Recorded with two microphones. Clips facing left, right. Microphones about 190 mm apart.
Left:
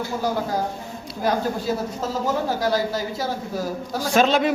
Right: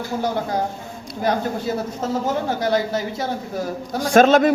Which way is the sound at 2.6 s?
20° right (ahead or behind).